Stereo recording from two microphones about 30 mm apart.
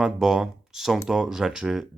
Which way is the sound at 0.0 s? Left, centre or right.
Centre.